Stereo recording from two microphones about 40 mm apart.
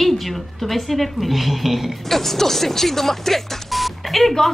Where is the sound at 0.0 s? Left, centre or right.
Centre.